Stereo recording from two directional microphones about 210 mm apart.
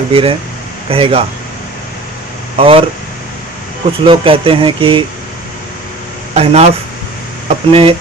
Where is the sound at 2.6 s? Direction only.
25° right (ahead or behind).